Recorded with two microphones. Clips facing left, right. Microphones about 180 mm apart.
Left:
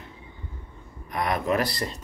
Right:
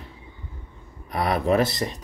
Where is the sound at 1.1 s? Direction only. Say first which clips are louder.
Right 4 dB; 30° right (ahead or behind).